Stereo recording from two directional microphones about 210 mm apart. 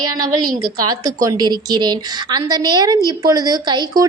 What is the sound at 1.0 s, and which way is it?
A woman's voice, 15° right (ahead or behind).